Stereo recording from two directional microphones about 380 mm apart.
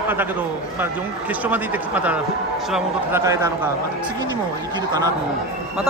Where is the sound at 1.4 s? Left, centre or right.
Centre.